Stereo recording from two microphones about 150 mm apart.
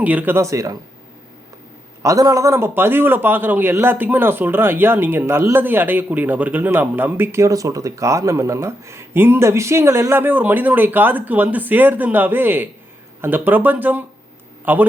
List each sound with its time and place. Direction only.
0.0 s a man's voice: 10° right (ahead or behind)
2.0 s a man's voice: 20° right (ahead or behind)